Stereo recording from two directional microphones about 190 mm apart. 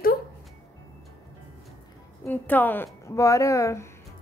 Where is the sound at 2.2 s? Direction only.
10° left (ahead or behind).